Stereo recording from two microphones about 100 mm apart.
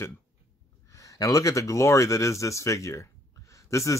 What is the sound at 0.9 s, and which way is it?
Speech, 35° left (ahead or behind).